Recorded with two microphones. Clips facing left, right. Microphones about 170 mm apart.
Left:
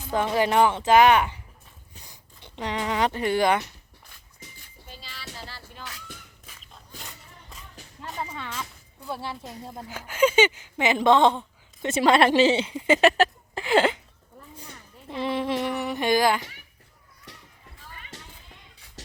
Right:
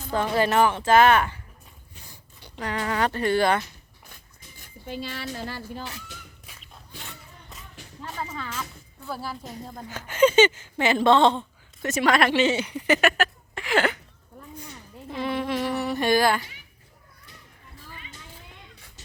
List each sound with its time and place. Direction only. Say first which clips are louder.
0.1 s a woman's voice: even; 15° left (ahead or behind)
4.6 s a sound: right 16 dB; 60° right (ahead or behind)
5.4 s speech: right 9 dB; 50° right (ahead or behind)
8.0 s a sound: even; centre (ahead or behind)
9.3 s a woman's voice: even; 5° left (ahead or behind)
11.8 s a woman's voice: left 2 dB; 25° left (ahead or behind)
15.1 s speech: left 1 dB; 25° left (ahead or behind)
17.3 s a sound: left 5 dB; 80° left
19.0 s music: left 10 dB; 90° left